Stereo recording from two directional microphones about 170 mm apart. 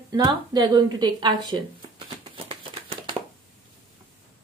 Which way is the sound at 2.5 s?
35° right (ahead or behind).